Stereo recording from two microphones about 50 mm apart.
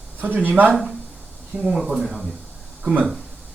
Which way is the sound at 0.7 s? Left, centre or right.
Centre.